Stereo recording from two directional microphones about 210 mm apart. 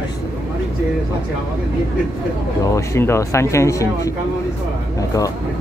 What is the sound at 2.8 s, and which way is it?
Speech, 10° left (ahead or behind).